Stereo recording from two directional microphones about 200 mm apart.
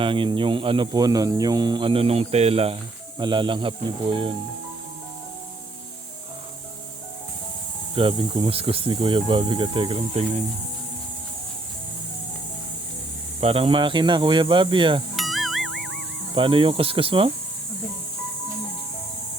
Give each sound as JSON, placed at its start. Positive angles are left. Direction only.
{"t": 0.0, "sound": "speech", "side_deg": -25}
{"t": 7.9, "sound": "speech", "side_deg": -25}
{"t": 13.4, "sound": "speech", "side_deg": -30}
{"t": 15.1, "sound": "music", "side_deg": 0}
{"t": 16.3, "sound": "speech", "side_deg": -25}